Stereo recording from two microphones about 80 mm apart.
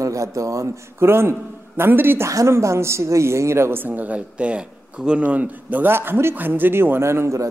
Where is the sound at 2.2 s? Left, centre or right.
Right.